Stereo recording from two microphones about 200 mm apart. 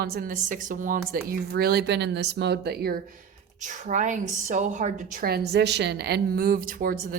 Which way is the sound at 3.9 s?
40° right (ahead or behind).